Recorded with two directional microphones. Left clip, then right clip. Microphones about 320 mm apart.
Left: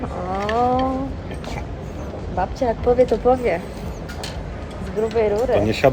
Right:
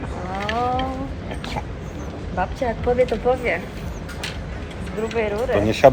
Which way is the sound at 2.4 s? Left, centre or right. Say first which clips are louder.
Left 2 dB; left.